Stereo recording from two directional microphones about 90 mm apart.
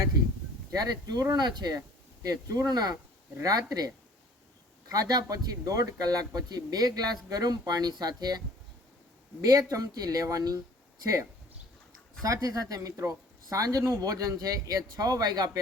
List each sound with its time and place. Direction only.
0.7 s speech: 45° right (ahead or behind)
9.4 s speech: 40° right (ahead or behind)
12.2 s speech: 40° right (ahead or behind)